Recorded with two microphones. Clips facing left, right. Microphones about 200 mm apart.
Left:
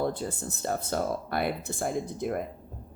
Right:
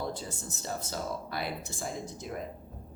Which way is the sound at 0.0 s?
55° left (ahead or behind).